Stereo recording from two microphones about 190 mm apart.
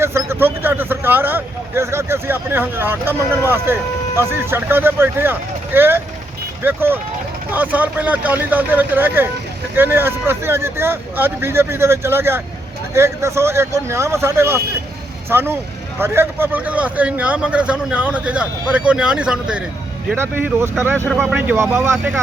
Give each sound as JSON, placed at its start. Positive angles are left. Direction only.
{"t": 0.0, "sound": "speech", "side_deg": -15}
{"t": 21.1, "sound": "speech", "side_deg": 0}
{"t": 21.3, "sound": "speech", "side_deg": -10}